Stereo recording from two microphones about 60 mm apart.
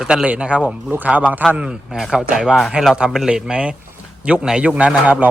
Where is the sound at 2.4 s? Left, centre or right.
Centre.